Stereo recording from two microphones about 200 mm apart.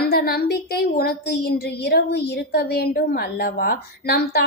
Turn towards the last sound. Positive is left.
turn(degrees=55)  # may be behind; listen again after turning